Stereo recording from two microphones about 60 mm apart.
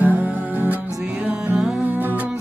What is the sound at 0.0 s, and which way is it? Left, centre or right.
Music, right.